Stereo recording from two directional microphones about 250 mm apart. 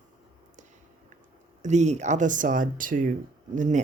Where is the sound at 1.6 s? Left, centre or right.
Right.